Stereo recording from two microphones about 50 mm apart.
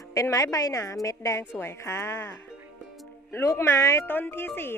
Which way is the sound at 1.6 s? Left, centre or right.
Left.